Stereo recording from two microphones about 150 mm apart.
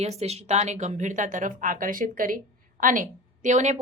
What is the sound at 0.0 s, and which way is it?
Speech, 45° right (ahead or behind).